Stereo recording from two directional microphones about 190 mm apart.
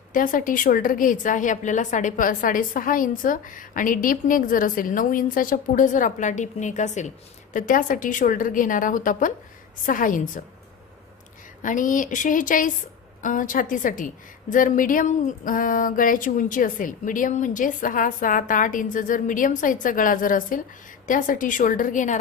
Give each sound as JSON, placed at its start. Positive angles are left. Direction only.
{"t": 0.1, "sound": "a woman's voice", "side_deg": 45}
{"t": 11.6, "sound": "a woman's voice", "side_deg": 45}